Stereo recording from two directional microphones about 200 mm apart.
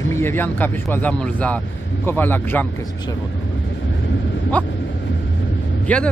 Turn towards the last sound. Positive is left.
turn(degrees=5)  # may be behind; listen again after turning